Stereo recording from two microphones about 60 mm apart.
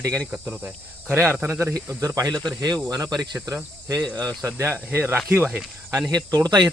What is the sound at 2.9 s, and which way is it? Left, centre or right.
Speech, right.